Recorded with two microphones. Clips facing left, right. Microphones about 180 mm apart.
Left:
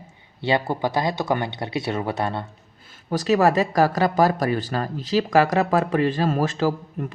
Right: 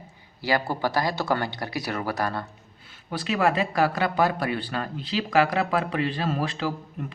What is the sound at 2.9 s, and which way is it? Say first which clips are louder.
Speech: left 8 dB; 40° left (ahead or behind).